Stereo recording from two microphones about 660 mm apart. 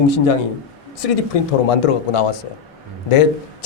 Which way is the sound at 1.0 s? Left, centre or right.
Left.